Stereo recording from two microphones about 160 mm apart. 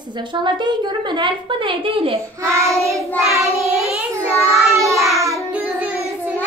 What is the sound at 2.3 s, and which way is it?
Speech, 20° right (ahead or behind).